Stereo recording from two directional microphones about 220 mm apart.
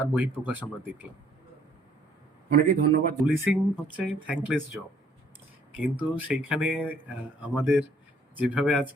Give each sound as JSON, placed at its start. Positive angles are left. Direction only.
{"t": 0.0, "sound": "speech", "side_deg": -5}
{"t": 2.5, "sound": "a man's voice", "side_deg": -45}
{"t": 3.2, "sound": "speech", "side_deg": -5}